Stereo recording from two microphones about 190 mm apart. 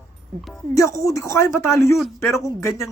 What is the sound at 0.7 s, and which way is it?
Speech, 15° left (ahead or behind).